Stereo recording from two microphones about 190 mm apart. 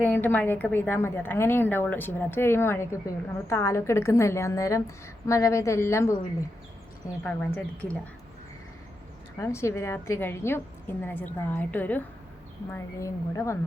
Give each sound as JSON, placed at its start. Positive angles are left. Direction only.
{"t": 0.0, "sound": "a woman's voice", "side_deg": 10}
{"t": 7.2, "sound": "a woman's voice", "side_deg": 10}
{"t": 9.4, "sound": "a woman's voice", "side_deg": 15}